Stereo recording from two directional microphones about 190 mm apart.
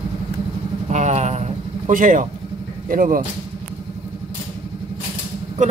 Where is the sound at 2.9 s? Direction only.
45° right (ahead or behind).